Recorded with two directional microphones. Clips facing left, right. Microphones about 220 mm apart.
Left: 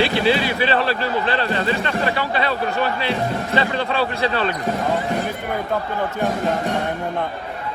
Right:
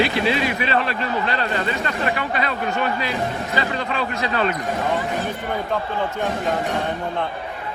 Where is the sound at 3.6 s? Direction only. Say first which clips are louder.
Left 4 dB; 30° left (ahead or behind).